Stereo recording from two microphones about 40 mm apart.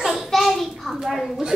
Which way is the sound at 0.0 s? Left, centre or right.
Centre.